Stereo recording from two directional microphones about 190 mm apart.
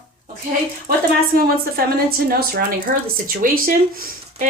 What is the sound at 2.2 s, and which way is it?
Speech, 50° right (ahead or behind).